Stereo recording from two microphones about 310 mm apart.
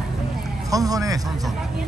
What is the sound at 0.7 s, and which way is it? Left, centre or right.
Speech, centre.